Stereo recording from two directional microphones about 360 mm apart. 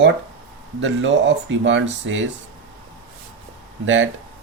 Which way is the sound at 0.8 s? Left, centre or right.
Right.